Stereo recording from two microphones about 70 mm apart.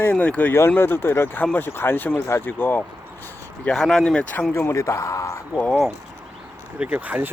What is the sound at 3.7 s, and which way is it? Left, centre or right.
Speech, centre.